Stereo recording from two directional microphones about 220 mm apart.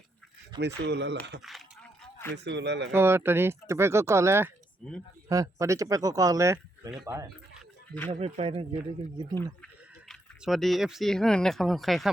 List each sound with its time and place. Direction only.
0.6 s speech: 50° right (ahead or behind)
1.4 s speech: centre (ahead or behind)
2.3 s speech: 50° right (ahead or behind)
2.9 s speech: 10° right (ahead or behind)
4.8 s speech: 5° left (ahead or behind)
5.3 s speech: 15° right (ahead or behind)
8.1 s speech: 25° right (ahead or behind)
10.1 s speech: centre (ahead or behind)